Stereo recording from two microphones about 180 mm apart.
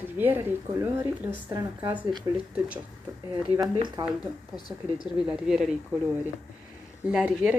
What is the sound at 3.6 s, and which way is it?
Speech, 25° right (ahead or behind).